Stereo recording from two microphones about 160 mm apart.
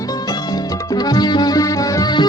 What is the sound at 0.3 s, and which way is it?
Music, 25° left (ahead or behind).